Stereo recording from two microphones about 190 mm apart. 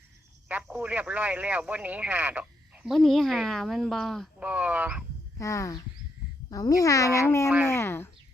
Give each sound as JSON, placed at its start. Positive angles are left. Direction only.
{"t": 0.4, "sound": "speech", "side_deg": -10}
{"t": 5.4, "sound": "a child's voice", "side_deg": 15}